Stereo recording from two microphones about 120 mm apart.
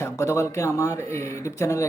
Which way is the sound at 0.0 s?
25° left (ahead or behind).